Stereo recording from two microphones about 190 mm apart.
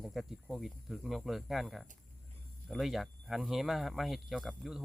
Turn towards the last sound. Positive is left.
turn(degrees=0)  # may be behind; listen again after turning